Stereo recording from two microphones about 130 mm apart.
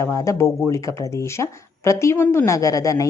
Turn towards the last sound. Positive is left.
turn(degrees=25)  # may be behind; listen again after turning